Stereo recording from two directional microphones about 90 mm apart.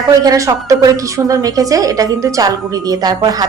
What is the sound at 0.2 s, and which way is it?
Speech, 40° right (ahead or behind).